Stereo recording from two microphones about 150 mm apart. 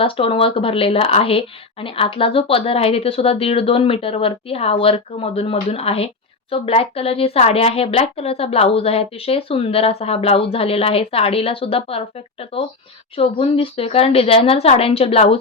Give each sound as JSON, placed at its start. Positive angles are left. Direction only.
{"t": 0.0, "sound": "speech", "side_deg": 35}